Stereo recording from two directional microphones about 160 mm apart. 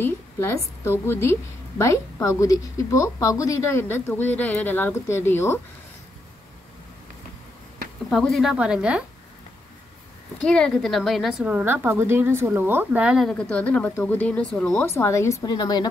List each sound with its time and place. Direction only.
0.0 s a woman's voice: 15° left (ahead or behind)
8.1 s speech: centre (ahead or behind)
10.4 s a woman's voice: 5° left (ahead or behind)
13.3 s a woman's voice: 5° left (ahead or behind); by 15.9 s 25° left (ahead or behind)